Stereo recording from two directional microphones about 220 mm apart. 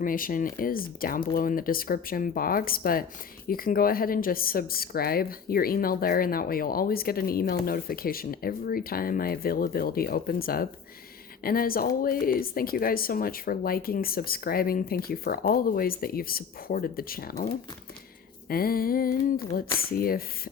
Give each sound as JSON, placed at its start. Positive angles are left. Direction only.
{"t": 0.0, "sound": "speech", "side_deg": 40}